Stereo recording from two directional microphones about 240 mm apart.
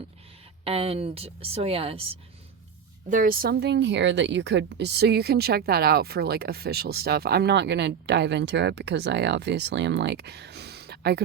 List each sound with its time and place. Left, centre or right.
0.6 s speech: right
3.1 s a woman's voice: right